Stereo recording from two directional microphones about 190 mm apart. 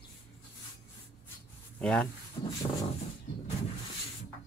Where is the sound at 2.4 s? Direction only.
30° left (ahead or behind).